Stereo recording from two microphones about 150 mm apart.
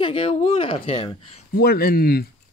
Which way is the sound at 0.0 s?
35° left (ahead or behind).